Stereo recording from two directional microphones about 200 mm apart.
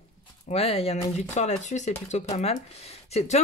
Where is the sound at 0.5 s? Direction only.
30° left (ahead or behind).